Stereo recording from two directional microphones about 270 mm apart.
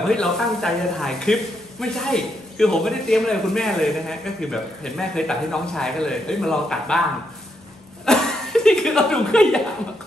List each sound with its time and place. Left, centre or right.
0.1 s a man's voice: centre
8.0 s chuckle: centre